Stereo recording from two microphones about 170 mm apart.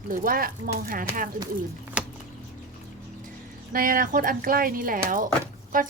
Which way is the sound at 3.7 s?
55° right (ahead or behind).